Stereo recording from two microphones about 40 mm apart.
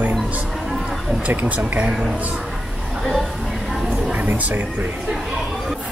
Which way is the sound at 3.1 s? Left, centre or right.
Centre.